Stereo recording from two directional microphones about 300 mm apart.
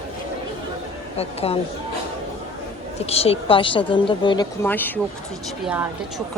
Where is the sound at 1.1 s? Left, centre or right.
Centre.